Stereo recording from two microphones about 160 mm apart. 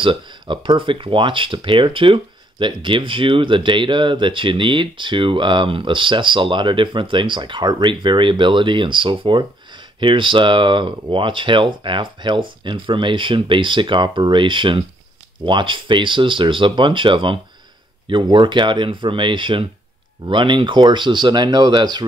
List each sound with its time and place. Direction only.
0.0 s speech: 30° right (ahead or behind)